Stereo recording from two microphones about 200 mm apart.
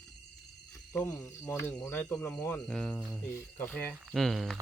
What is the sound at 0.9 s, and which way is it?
Speech, 15° left (ahead or behind).